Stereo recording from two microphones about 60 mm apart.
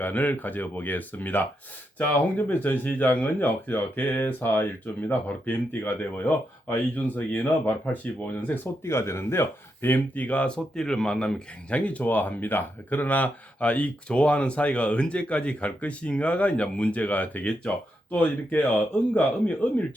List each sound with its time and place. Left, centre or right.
0.0 s speech: left
8.8 s speech: left; by 11.4 s centre
11.7 s speech: left